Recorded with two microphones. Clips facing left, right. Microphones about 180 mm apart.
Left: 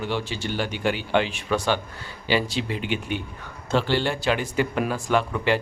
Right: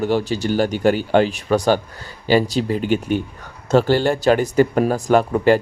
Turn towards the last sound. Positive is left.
turn(degrees=-45)  # may be behind; listen again after turning